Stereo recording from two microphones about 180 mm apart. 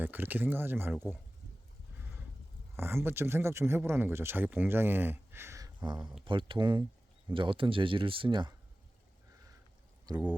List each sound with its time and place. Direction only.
0.0 s speech: 10° right (ahead or behind)
2.0 s a sound: 10° right (ahead or behind)
2.7 s speech: 15° right (ahead or behind)